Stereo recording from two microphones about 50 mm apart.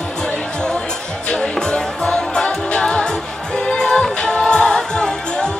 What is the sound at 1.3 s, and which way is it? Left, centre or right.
Music, centre.